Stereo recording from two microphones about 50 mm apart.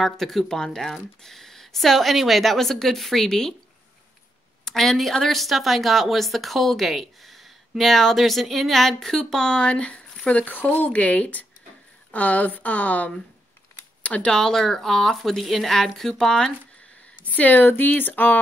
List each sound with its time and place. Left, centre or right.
0.0 s speech: centre
4.6 s a woman's voice: centre; by 13.1 s left
14.2 s speech: centre
17.4 s speech: left